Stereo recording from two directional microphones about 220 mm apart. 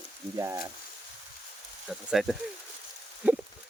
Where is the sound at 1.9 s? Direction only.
Centre (ahead or behind).